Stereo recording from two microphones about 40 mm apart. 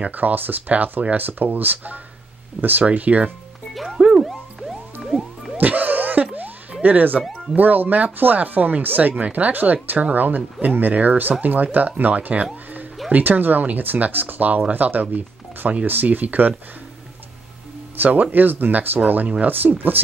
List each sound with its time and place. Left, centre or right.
0.1 s speech: right
2.8 s speech: right
3.7 s music: centre
5.6 s laughter: right
6.8 s speech: right
17.9 s speech: right
19.4 s speech: right